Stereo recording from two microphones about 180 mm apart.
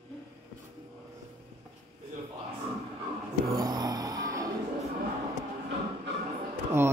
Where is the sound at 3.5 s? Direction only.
20° right (ahead or behind).